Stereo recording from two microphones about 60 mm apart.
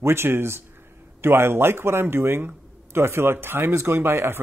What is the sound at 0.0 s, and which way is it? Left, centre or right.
Speech, right.